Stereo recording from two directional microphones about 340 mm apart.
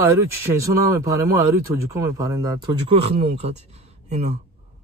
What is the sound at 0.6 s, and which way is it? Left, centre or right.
A man's voice, centre.